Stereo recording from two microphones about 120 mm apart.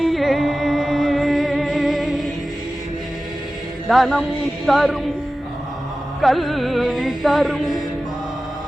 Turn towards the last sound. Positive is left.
turn(degrees=0)  # may be behind; listen again after turning